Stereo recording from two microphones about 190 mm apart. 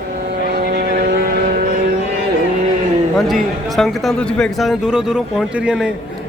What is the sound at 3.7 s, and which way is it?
Speech, centre (ahead or behind).